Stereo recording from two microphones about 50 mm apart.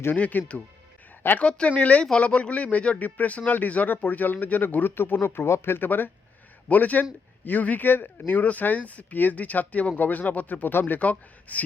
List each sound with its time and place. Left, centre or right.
0.2 s speech: left
6.7 s speech: left
8.3 s speech: left